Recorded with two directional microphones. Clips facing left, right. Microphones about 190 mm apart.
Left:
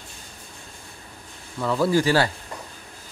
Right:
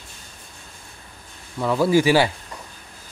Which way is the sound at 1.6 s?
10° right (ahead or behind).